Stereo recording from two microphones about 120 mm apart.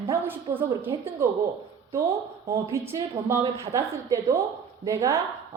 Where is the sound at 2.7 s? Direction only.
20° right (ahead or behind).